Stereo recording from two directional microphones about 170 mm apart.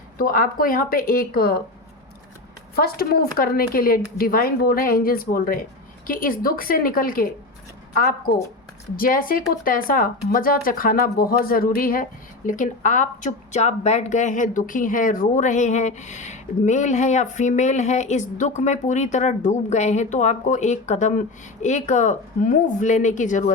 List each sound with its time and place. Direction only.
0.2 s speech: 55° left (ahead or behind)
2.7 s speech: 65° left (ahead or behind)
9.0 s a woman's voice: 55° left (ahead or behind)